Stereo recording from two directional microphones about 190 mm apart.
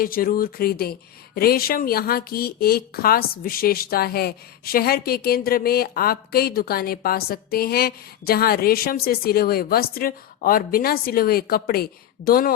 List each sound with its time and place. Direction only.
0.0 s speech: 50° left (ahead or behind)